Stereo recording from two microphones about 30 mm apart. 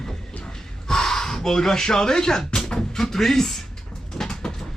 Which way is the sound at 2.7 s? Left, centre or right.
Centre.